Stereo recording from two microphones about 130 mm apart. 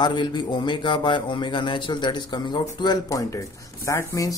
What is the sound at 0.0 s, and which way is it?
Speech, 35° left (ahead or behind).